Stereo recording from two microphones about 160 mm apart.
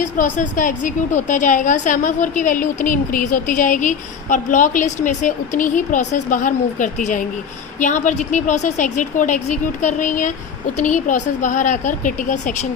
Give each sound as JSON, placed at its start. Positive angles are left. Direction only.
{"t": 0.0, "sound": "a woman's voice", "side_deg": 55}